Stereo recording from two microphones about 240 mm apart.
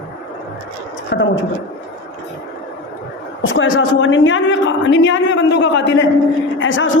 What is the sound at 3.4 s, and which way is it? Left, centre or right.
A woman's voice, left.